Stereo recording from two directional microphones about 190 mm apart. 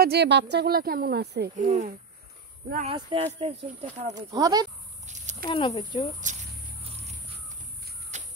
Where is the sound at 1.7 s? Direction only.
45° right (ahead or behind).